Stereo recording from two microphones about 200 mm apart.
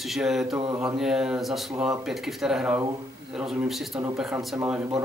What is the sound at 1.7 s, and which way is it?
Speech, 15° right (ahead or behind).